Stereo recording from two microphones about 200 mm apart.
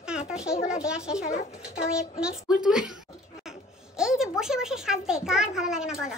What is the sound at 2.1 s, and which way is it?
Speech, 5° right (ahead or behind).